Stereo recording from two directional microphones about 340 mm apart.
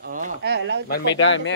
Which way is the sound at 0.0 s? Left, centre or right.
Right.